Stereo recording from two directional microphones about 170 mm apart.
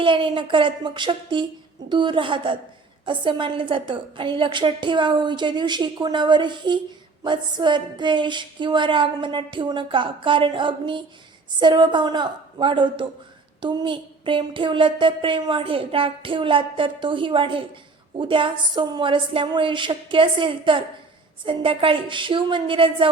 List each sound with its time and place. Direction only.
0.0 s a woman's voice: 30° right (ahead or behind)